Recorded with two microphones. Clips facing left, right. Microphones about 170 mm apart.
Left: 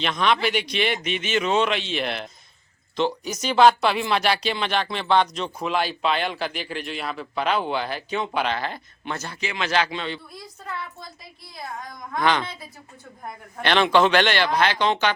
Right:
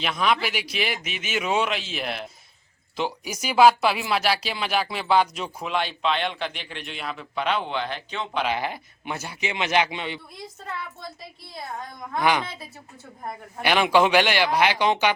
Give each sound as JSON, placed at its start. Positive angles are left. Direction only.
{"t": 0.0, "sound": "a man's voice", "side_deg": -5}
{"t": 8.4, "sound": "a man's voice", "side_deg": -10}
{"t": 12.2, "sound": "speech", "side_deg": -10}
{"t": 13.6, "sound": "speech", "side_deg": -10}